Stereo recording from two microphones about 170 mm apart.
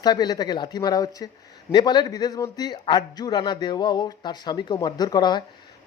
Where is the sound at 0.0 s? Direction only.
25° left (ahead or behind).